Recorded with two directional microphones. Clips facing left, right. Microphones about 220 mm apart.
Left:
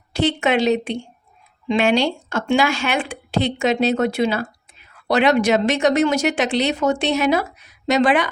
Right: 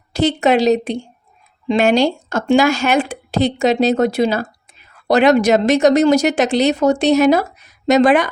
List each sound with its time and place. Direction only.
0.1 s speech: 40° right (ahead or behind)